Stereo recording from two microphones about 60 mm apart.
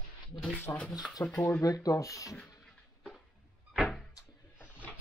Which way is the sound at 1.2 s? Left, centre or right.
Left.